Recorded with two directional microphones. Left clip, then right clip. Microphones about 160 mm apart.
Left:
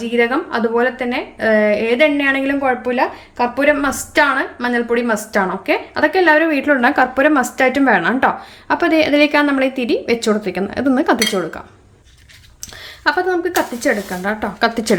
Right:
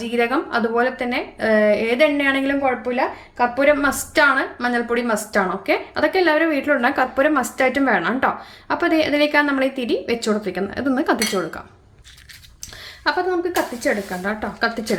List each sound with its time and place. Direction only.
0.0 s a woman's voice: 5° left (ahead or behind)
13.1 s a woman's voice: 15° left (ahead or behind)